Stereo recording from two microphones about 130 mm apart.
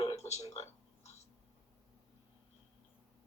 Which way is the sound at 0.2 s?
55° left (ahead or behind).